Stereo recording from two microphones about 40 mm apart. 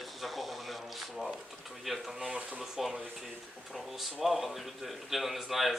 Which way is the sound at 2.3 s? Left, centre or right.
Right.